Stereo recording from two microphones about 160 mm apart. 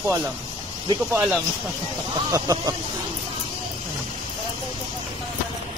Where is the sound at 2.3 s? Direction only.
20° right (ahead or behind).